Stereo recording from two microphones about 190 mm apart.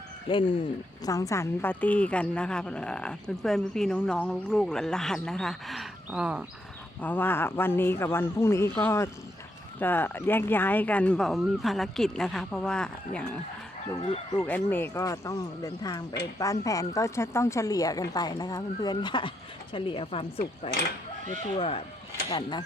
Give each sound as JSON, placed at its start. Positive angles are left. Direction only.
{"t": 0.3, "sound": "a woman's voice", "side_deg": 25}
{"t": 7.0, "sound": "a woman's voice", "side_deg": 10}
{"t": 14.4, "sound": "a woman's voice", "side_deg": 10}